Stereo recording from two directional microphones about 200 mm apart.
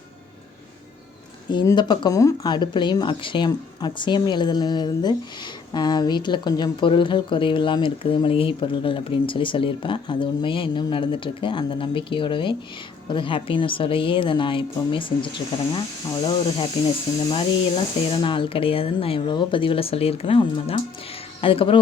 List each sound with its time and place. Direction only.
1.5 s speech: 20° left (ahead or behind)